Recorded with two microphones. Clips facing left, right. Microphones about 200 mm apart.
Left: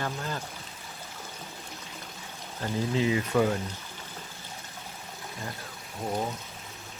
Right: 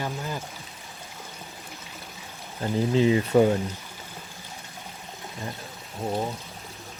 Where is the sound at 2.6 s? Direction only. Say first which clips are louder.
Right 6 dB; 30° right (ahead or behind).